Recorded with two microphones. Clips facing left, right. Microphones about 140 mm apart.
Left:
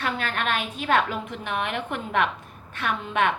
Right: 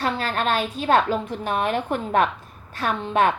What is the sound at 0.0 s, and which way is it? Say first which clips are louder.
A woman's voice: right 4 dB; 35° right (ahead or behind).